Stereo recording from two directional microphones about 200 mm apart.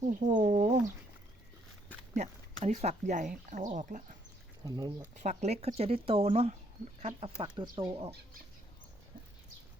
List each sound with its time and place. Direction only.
0.2 s speech: 35° right (ahead or behind)
2.1 s speech: 35° right (ahead or behind)
4.6 s speech: 20° right (ahead or behind)
5.1 s speech: 35° right (ahead or behind)
7.2 s speech: 20° right (ahead or behind)